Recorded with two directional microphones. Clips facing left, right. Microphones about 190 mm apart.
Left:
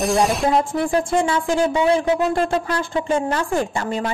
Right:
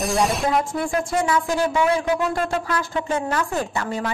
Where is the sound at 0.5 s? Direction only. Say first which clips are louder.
Left 3 dB; 30° left (ahead or behind).